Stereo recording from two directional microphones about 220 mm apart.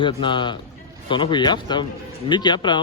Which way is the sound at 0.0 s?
20° left (ahead or behind).